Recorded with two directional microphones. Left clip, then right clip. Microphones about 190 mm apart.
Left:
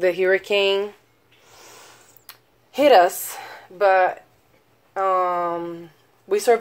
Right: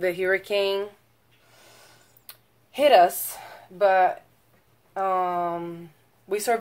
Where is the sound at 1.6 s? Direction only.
35° left (ahead or behind).